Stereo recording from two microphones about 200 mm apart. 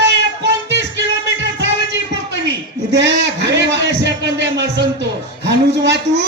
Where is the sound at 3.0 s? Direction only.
60° right (ahead or behind).